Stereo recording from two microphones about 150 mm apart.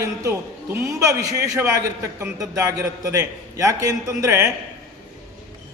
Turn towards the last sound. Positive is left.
turn(degrees=-20)  # may be behind; listen again after turning